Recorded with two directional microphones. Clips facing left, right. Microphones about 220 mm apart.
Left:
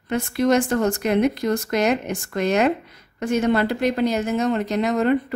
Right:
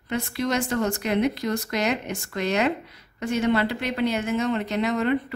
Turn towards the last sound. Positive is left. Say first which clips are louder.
# left 4 dB
turn(degrees=45)  # may be behind; listen again after turning